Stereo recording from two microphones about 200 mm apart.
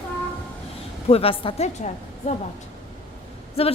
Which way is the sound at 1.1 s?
30° left (ahead or behind).